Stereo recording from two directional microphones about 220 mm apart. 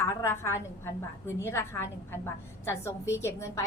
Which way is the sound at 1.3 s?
10° left (ahead or behind).